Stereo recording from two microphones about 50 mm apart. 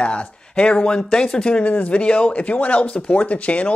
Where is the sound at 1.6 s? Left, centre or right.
Left.